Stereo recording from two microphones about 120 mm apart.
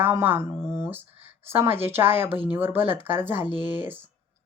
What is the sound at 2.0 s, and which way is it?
Speech, 20° right (ahead or behind).